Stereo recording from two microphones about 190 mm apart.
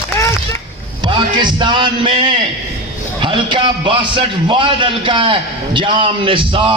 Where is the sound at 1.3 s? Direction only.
25° right (ahead or behind).